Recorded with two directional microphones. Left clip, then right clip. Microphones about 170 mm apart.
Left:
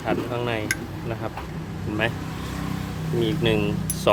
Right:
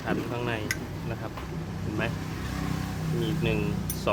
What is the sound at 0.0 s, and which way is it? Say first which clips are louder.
Speech: left 5 dB; 25° left (ahead or behind).